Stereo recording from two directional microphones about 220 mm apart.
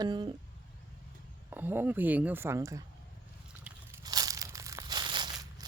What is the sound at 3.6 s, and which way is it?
Crumpling, 15° right (ahead or behind).